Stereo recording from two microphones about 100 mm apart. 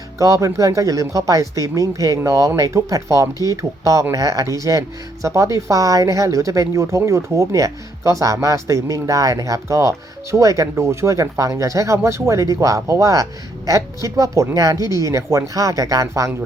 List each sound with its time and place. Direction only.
0.2 s speech: 35° right (ahead or behind)